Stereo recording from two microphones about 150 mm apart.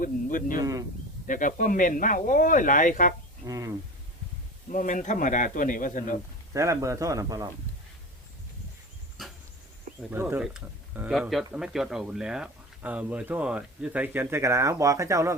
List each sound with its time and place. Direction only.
0.0 s speech: 65° left (ahead or behind)
0.6 s a man's voice: 25° right (ahead or behind)
1.3 s speech: 60° left (ahead or behind)
3.4 s a man's voice: 20° right (ahead or behind)
4.7 s speech: 60° left (ahead or behind)
6.5 s a man's voice: 20° right (ahead or behind)
10.1 s speech: 15° right (ahead or behind)